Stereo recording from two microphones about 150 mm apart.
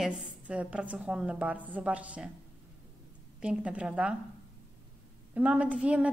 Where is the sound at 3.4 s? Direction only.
5° right (ahead or behind).